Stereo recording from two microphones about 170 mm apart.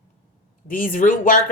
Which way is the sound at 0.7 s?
55° left (ahead or behind).